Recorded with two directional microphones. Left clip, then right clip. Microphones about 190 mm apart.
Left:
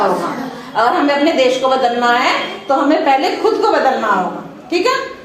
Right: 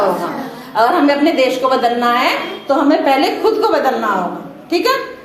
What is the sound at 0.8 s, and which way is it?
A woman's voice, 25° right (ahead or behind).